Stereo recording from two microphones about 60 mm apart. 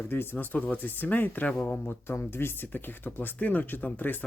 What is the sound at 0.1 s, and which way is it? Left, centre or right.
A man's voice, left.